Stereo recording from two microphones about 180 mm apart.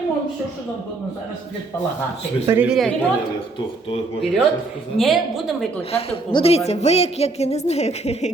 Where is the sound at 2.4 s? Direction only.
15° right (ahead or behind).